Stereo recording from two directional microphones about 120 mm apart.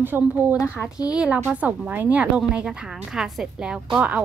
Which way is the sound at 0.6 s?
20° left (ahead or behind).